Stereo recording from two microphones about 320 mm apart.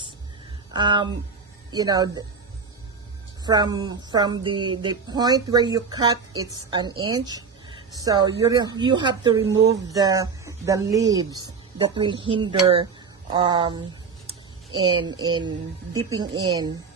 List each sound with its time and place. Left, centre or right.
0.7 s speech: centre
3.4 s speech: centre
15.4 s speech: centre